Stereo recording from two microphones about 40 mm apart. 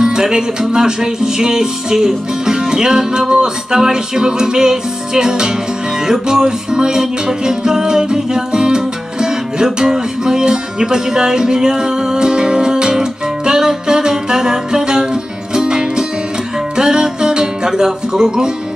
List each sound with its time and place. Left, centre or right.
0.0 s music: centre